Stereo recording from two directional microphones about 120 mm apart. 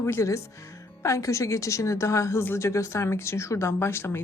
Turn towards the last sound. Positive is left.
turn(degrees=20)  # may be behind; listen again after turning